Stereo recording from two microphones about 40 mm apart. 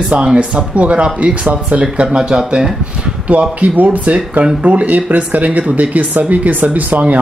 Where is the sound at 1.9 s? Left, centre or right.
Right.